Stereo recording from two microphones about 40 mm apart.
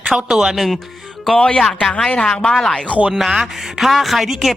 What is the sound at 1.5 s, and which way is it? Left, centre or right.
Speech, centre.